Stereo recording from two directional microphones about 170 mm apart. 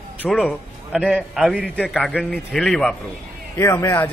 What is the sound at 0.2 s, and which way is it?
A man's voice, centre (ahead or behind).